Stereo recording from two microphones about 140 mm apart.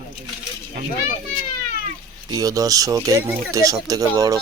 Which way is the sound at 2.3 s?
25° right (ahead or behind).